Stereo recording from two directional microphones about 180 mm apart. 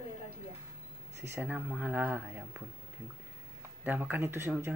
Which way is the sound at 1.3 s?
10° right (ahead or behind).